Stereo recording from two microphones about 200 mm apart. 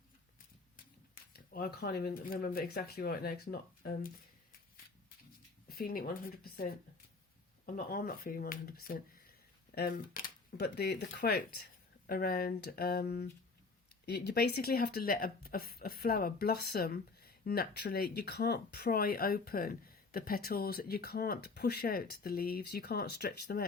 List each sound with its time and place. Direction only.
1.1 s speech: 45° left (ahead or behind)
5.6 s speech: 50° left (ahead or behind)